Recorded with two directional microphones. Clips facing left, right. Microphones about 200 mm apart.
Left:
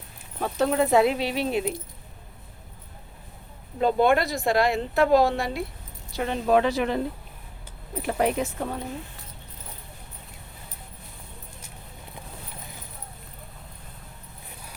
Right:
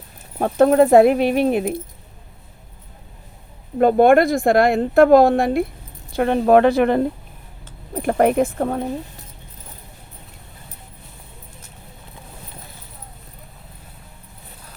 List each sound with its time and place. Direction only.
0.3 s speech: 50° right (ahead or behind)
3.8 s speech: 55° right (ahead or behind)